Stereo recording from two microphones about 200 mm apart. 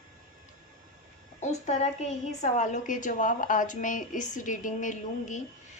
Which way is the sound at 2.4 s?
40° left (ahead or behind).